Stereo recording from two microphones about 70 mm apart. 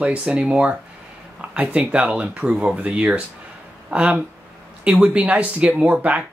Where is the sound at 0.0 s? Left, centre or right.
Centre.